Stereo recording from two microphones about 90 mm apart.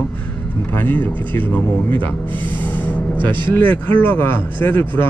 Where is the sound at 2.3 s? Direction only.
20° left (ahead or behind).